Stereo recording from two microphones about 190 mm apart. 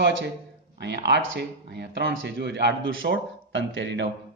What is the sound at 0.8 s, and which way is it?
Speech, 75° right (ahead or behind).